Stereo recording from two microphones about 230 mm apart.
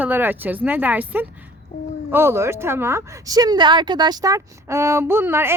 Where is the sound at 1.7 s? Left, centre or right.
Left.